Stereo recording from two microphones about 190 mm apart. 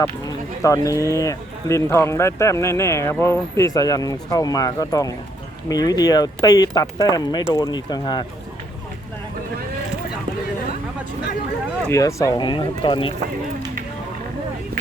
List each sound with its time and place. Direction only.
0.3 s speech: 15° left (ahead or behind)
11.9 s speech: 15° left (ahead or behind)